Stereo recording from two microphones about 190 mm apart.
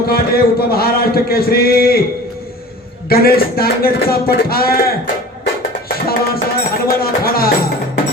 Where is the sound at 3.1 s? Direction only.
55° left (ahead or behind).